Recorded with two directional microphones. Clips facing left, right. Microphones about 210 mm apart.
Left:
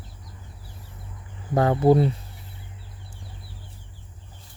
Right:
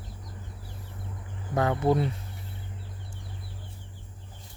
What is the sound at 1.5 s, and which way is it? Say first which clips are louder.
Speech: left 6 dB; 35° left (ahead or behind).